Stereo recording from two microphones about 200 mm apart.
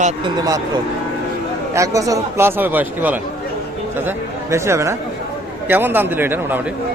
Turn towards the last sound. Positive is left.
turn(degrees=-10)  # may be behind; listen again after turning